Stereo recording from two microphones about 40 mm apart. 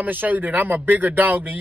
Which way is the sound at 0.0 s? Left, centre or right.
Right.